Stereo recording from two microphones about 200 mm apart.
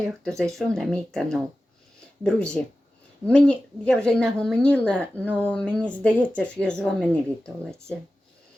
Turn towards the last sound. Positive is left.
turn(degrees=5)  # may be behind; listen again after turning